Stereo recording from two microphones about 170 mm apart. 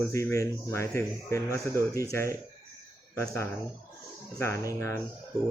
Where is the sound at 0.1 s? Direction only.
15° left (ahead or behind).